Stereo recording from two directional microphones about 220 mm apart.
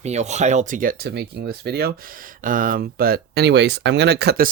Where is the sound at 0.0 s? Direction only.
30° right (ahead or behind).